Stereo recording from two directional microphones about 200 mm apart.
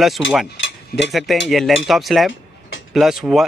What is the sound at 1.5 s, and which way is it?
Speech, centre (ahead or behind).